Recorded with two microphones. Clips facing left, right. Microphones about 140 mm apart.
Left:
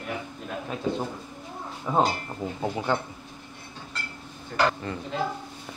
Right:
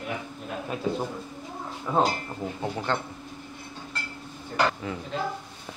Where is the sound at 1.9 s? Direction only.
10° left (ahead or behind).